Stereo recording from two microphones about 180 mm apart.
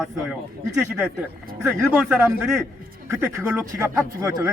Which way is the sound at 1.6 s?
10° right (ahead or behind).